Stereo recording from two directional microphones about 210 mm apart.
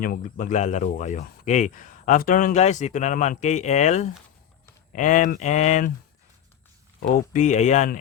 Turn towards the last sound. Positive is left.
turn(degrees=35)  # may be behind; listen again after turning